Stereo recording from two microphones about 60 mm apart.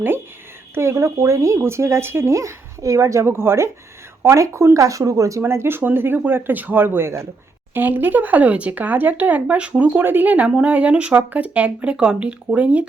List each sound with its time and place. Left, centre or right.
0.7 s speech: right
5.4 s speech: right
7.7 s speech: right